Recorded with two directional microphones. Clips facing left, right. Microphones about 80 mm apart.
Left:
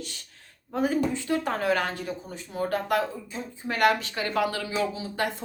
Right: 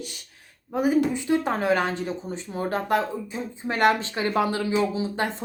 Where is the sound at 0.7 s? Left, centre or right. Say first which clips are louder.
Right 4 dB; centre.